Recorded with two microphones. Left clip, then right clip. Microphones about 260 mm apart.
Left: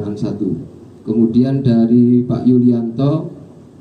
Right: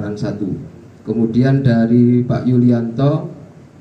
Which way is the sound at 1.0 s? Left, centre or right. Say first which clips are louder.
Left 2 dB; right.